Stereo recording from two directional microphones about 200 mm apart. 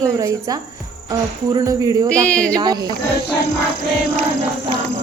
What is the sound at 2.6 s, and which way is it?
Speech, 20° right (ahead or behind).